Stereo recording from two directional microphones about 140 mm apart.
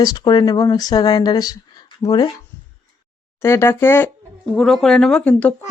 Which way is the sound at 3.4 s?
20° left (ahead or behind).